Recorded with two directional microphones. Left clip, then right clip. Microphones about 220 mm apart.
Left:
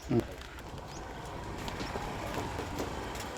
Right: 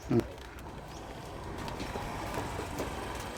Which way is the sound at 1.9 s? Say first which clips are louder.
Even; 25° right (ahead or behind).